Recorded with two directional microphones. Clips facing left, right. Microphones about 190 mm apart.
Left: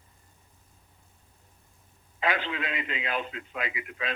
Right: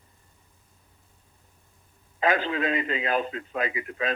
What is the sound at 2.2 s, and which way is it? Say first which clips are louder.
Radio: right 5 dB; 40° right (ahead or behind).